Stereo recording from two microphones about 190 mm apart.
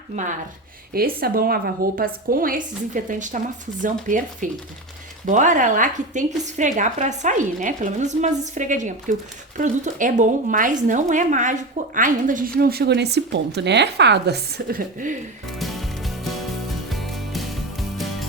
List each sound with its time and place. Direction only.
0.9 s a woman's voice: 50° right (ahead or behind)
15.4 s music: centre (ahead or behind)